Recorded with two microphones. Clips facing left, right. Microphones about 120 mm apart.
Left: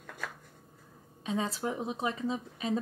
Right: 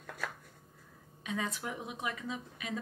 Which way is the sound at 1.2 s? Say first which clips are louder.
Left 5 dB; 30° left (ahead or behind).